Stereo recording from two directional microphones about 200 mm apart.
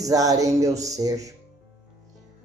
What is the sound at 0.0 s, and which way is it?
Speech, 15° right (ahead or behind).